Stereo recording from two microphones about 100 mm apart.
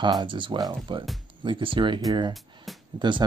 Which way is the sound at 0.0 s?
50° right (ahead or behind).